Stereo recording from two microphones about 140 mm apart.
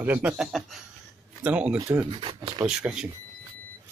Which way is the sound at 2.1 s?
40° right (ahead or behind).